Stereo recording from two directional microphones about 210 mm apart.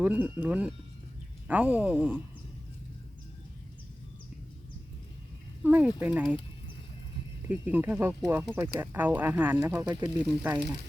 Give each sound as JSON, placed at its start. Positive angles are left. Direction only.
{"t": 0.0, "sound": "speech", "side_deg": -5}
{"t": 5.6, "sound": "speech", "side_deg": -10}
{"t": 7.4, "sound": "speech", "side_deg": -10}
{"t": 9.9, "sound": "speech", "side_deg": -20}